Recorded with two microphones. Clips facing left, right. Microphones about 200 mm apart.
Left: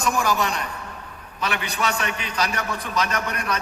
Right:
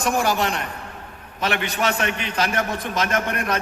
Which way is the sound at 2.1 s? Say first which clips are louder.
Right 2 dB; 60° right (ahead or behind).